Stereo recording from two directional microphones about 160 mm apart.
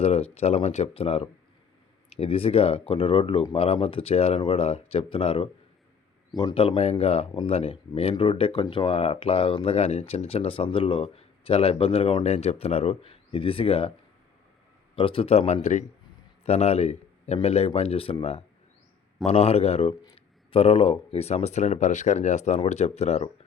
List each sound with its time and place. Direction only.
0.0 s speech: 40° left (ahead or behind)
14.9 s speech: 35° left (ahead or behind)